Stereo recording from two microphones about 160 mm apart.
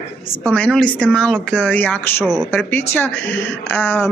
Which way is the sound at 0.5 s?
5° left (ahead or behind).